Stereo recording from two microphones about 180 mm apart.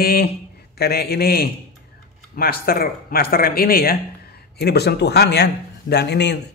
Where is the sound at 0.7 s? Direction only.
60° left (ahead or behind).